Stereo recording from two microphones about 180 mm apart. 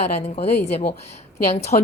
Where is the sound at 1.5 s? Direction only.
35° left (ahead or behind).